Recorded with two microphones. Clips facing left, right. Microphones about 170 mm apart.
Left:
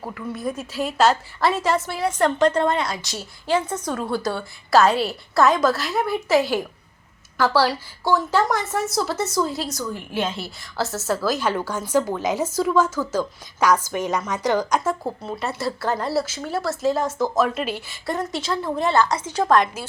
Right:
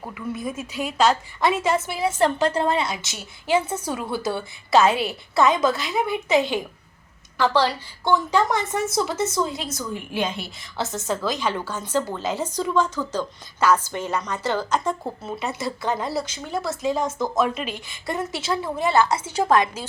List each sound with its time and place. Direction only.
0.1 s a woman's voice: centre (ahead or behind)
2.7 s a woman's voice: 25° right (ahead or behind)
3.7 s a woman's voice: 10° right (ahead or behind)